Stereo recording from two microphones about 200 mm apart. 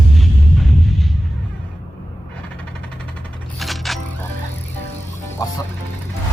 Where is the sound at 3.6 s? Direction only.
Centre (ahead or behind).